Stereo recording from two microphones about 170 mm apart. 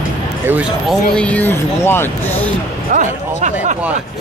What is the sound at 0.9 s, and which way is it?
Speech, 5° left (ahead or behind).